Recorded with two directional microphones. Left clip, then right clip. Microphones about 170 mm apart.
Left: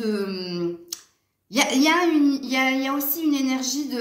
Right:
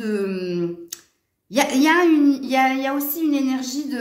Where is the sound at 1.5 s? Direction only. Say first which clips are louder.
Right 2 dB; 55° right (ahead or behind).